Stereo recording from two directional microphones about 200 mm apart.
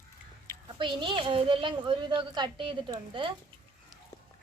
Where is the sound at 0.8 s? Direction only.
25° right (ahead or behind).